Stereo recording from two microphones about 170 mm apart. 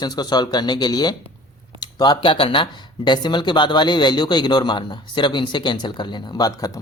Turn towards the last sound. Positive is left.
turn(degrees=20)  # may be behind; listen again after turning